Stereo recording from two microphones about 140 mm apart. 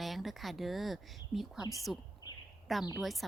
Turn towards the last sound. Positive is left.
turn(degrees=0)  # may be behind; listen again after turning